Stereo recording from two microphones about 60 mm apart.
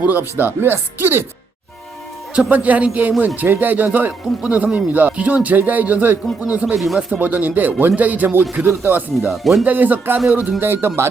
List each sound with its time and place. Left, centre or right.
0.0 s speech: right
2.3 s a man's voice: right
6.7 s speech: centre
7.1 s a man's voice: right
9.3 s speech: centre
9.6 s speech: right